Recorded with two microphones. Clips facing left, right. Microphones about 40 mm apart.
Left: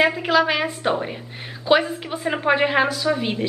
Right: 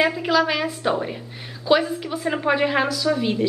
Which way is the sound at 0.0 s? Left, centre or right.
Centre.